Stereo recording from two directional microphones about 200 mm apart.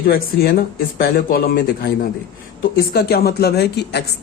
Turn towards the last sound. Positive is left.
turn(degrees=55)  # may be behind; listen again after turning